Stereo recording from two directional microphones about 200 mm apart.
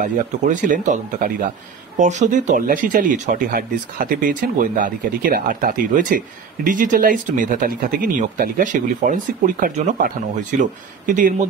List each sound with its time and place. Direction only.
0.0 s speech: 40° right (ahead or behind)